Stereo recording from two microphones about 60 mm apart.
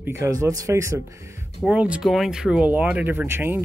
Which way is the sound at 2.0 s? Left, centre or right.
Centre.